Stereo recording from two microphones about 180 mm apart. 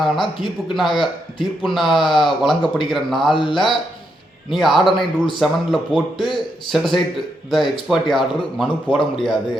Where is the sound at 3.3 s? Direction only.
25° left (ahead or behind).